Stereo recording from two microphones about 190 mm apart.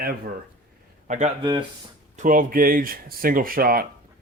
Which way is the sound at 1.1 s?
40° right (ahead or behind).